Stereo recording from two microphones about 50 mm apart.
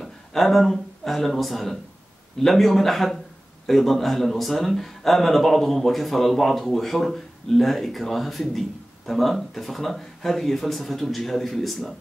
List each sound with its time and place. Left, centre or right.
0.0 s a man's voice: centre